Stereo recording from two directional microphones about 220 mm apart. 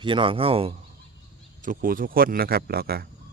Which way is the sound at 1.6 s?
40° right (ahead or behind).